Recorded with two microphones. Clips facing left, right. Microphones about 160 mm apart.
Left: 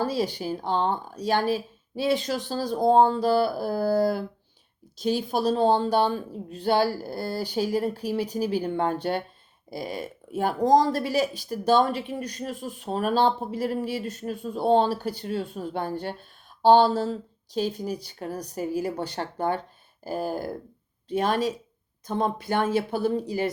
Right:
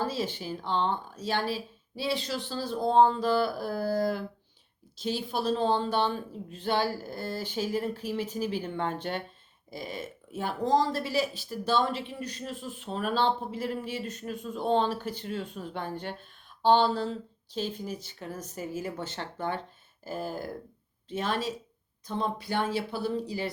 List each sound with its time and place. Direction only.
0.0 s speech: 40° left (ahead or behind)